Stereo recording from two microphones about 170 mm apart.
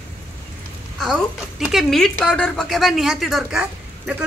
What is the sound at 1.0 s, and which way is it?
Speech, centre (ahead or behind).